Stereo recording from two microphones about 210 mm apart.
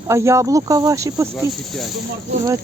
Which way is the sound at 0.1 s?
15° right (ahead or behind).